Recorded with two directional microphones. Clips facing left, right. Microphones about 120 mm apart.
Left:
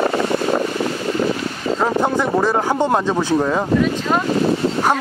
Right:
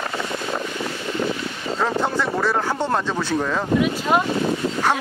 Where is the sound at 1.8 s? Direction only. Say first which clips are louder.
Left 3 dB; 15° left (ahead or behind).